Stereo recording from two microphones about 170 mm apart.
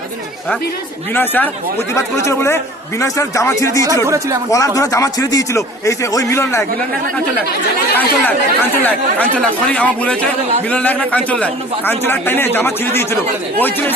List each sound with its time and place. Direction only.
1.1 s a man's voice: 10° left (ahead or behind)
4.0 s speech: 15° right (ahead or behind)
4.5 s a man's voice: 20° left (ahead or behind)
7.9 s a man's voice: 10° left (ahead or behind)